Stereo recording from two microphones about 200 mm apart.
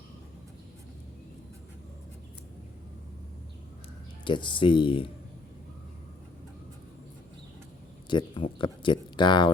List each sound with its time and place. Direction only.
4.2 s speech: 25° left (ahead or behind)
8.1 s speech: 25° left (ahead or behind)